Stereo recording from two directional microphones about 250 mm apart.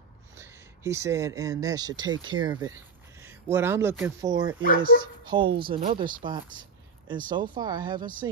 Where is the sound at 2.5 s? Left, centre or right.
Centre.